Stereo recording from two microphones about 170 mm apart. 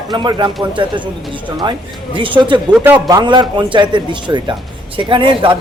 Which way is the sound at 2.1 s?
30° right (ahead or behind).